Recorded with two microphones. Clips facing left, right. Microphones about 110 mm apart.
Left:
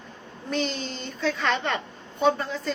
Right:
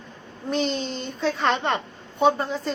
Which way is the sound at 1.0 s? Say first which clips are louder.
Right 3 dB; 30° right (ahead or behind).